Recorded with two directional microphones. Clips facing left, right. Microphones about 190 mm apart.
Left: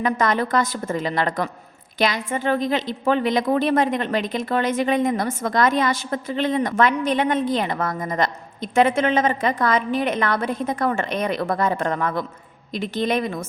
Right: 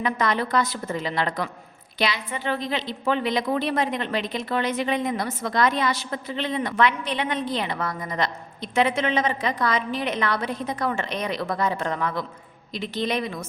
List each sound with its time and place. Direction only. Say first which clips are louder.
0.0 s a woman's voice: left 3 dB; 45° left (ahead or behind)